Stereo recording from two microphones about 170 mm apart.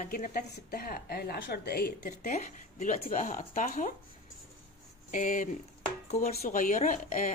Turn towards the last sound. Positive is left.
turn(degrees=50)  # may be behind; listen again after turning